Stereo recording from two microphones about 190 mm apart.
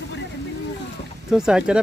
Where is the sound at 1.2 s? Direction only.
5° right (ahead or behind).